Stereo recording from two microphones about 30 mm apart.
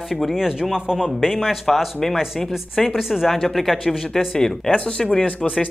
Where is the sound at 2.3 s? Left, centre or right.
Centre.